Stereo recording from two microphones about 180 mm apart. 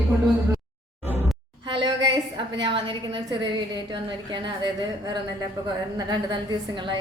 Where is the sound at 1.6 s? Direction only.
25° right (ahead or behind).